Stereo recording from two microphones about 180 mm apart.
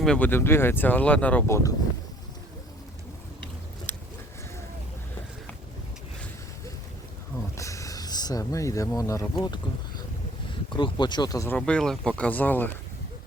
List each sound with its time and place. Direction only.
0.0 s speech: 5° left (ahead or behind)
3.9 s a sound: 10° left (ahead or behind)
7.5 s speech: 15° left (ahead or behind)
11.5 s speech: 5° left (ahead or behind)